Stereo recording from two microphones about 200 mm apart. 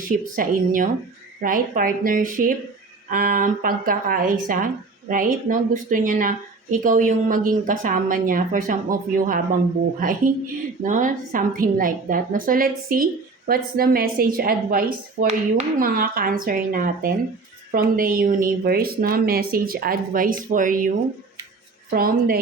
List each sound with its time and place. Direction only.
0.3 s speech: 40° right (ahead or behind)